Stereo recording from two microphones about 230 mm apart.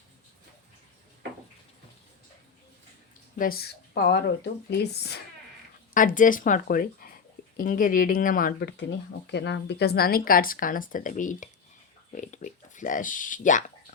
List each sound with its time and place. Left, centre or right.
3.3 s speech: left